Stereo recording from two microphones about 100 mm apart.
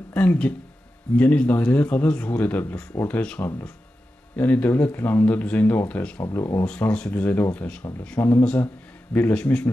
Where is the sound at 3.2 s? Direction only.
10° left (ahead or behind).